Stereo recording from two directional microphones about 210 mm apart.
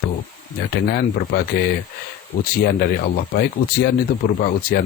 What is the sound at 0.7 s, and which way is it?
Speech, 45° left (ahead or behind).